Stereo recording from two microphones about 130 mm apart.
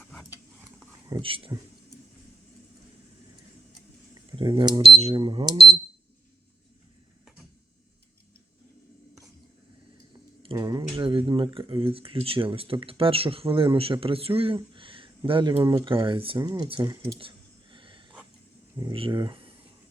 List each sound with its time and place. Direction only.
1.2 s speech: 45° right (ahead or behind)
4.1 s a sound: 35° right (ahead or behind)
5.1 s speech: 40° right (ahead or behind)
10.4 s speech: 35° right (ahead or behind)
17.2 s a sound: 40° right (ahead or behind)
18.9 s speech: 40° right (ahead or behind)